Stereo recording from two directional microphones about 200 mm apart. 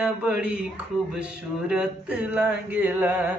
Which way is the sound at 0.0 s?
5° right (ahead or behind).